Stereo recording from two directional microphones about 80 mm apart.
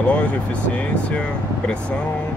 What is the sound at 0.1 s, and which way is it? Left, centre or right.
Speech, centre.